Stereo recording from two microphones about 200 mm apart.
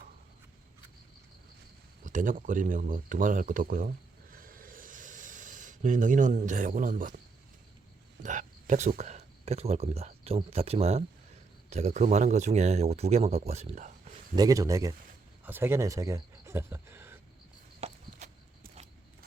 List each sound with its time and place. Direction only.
2.0 s speech: 40° right (ahead or behind)
8.2 s speech: 40° right (ahead or behind)
14.3 s speech: 15° right (ahead or behind)
17.7 s a sound: 30° right (ahead or behind)